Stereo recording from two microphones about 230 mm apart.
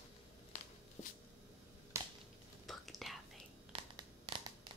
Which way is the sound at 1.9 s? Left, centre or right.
Centre.